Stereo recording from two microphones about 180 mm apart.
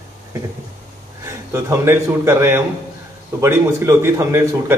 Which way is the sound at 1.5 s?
15° right (ahead or behind).